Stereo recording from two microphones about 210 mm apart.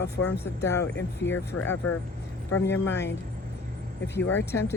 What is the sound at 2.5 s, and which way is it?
Speech, 55° left (ahead or behind).